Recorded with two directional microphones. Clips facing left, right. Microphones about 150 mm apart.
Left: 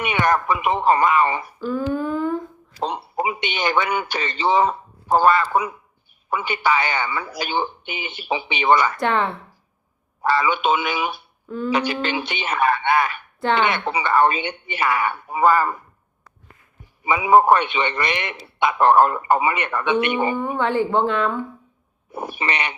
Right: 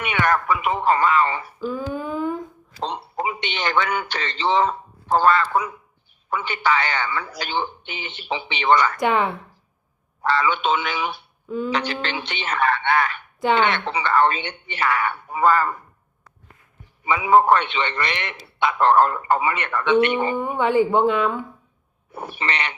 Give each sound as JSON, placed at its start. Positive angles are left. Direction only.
{"t": 0.0, "sound": "a man's voice", "side_deg": 15}
{"t": 1.6, "sound": "humming", "side_deg": -5}
{"t": 2.8, "sound": "a man's voice", "side_deg": 10}
{"t": 9.0, "sound": "a woman's voice", "side_deg": -10}
{"t": 10.2, "sound": "a man's voice", "side_deg": 10}
{"t": 11.4, "sound": "speech", "side_deg": -5}
{"t": 11.7, "sound": "a man's voice", "side_deg": 10}
{"t": 17.0, "sound": "a man's voice", "side_deg": 15}
{"t": 20.3, "sound": "a woman's voice", "side_deg": -10}
{"t": 22.1, "sound": "a man's voice", "side_deg": 10}